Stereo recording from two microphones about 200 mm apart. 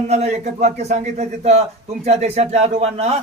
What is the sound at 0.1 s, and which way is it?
A man's voice, 35° right (ahead or behind).